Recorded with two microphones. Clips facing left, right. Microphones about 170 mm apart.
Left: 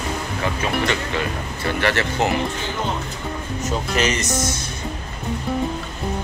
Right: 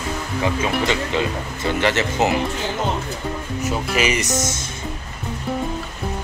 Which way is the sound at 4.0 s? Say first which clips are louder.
Right 1 dB; 10° right (ahead or behind).